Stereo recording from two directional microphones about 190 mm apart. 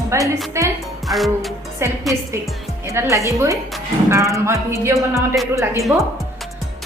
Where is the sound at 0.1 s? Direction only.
15° right (ahead or behind).